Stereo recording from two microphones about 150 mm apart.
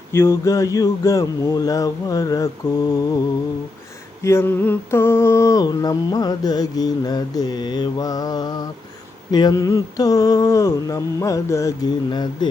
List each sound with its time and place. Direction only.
0.1 s mantra: 20° left (ahead or behind)
4.2 s mantra: 15° left (ahead or behind)